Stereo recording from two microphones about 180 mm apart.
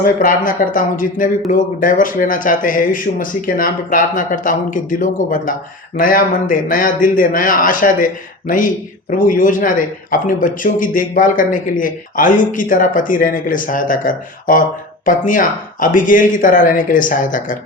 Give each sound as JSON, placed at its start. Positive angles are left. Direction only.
{"t": 0.0, "sound": "a man's voice", "side_deg": 50}